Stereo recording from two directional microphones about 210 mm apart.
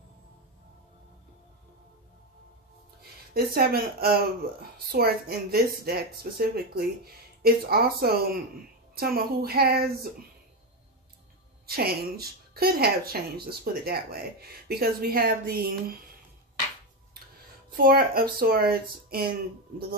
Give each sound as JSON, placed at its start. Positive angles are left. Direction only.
{"t": 3.0, "sound": "speech", "side_deg": -45}
{"t": 11.6, "sound": "speech", "side_deg": -45}
{"t": 17.7, "sound": "speech", "side_deg": -45}